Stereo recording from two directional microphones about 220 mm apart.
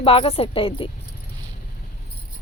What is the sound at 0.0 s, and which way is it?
Speech, 25° left (ahead or behind).